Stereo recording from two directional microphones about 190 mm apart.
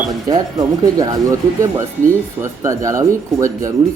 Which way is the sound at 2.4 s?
15° right (ahead or behind).